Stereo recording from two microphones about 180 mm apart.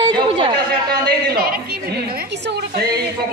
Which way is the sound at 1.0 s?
60° right (ahead or behind).